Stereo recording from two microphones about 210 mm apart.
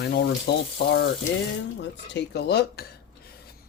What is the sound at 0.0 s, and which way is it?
Speech, 50° left (ahead or behind).